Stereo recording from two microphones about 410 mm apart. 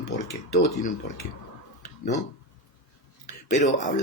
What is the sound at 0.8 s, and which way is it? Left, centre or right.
Speech, left.